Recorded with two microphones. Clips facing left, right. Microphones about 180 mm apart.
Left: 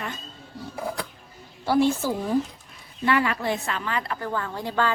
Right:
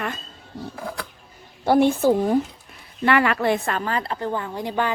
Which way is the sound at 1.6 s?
55° right (ahead or behind).